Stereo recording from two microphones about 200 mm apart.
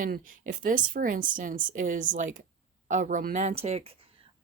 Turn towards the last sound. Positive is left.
turn(degrees=-35)  # may be behind; listen again after turning